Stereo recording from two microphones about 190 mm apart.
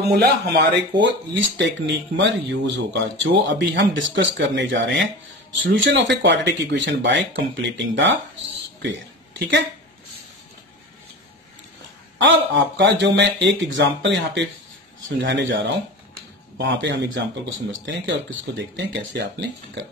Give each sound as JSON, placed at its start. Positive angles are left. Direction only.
{"t": 0.0, "sound": "speech", "side_deg": -55}
{"t": 12.2, "sound": "speech", "side_deg": -70}